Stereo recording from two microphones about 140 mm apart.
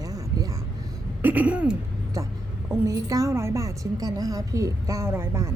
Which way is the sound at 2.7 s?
25° right (ahead or behind).